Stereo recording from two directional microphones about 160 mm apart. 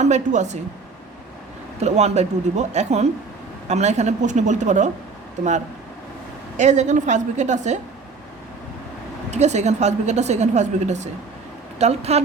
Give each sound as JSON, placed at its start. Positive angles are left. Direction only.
{"t": 0.0, "sound": "a woman's voice", "side_deg": -50}
{"t": 1.8, "sound": "a woman's voice", "side_deg": -45}
{"t": 6.6, "sound": "a woman's voice", "side_deg": -45}
{"t": 9.3, "sound": "a woman's voice", "side_deg": -45}